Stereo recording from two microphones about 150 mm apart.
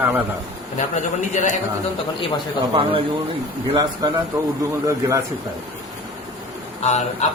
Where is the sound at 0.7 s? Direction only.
50° left (ahead or behind).